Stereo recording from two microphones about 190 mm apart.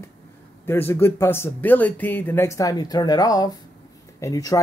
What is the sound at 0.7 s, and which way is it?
Speech, 10° left (ahead or behind).